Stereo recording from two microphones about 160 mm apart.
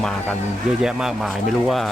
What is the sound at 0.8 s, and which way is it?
Speech, 5° right (ahead or behind).